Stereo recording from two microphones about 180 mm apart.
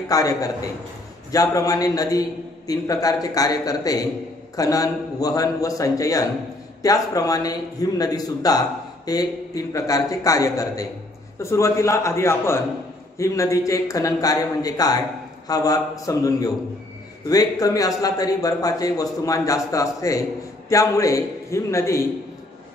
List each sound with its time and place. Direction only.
0.1 s a man's voice: 20° left (ahead or behind)